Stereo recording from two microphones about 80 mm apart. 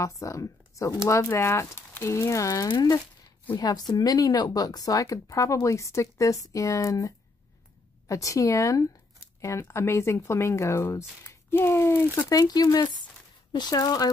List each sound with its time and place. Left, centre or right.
0.0 s speech: left
3.5 s speech: left
12.3 s speech: left